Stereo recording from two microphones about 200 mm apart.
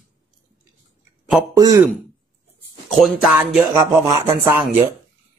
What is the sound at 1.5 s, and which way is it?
Speech, 20° right (ahead or behind).